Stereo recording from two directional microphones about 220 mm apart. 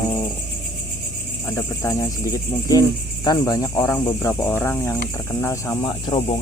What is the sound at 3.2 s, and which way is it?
Speech, 15° left (ahead or behind).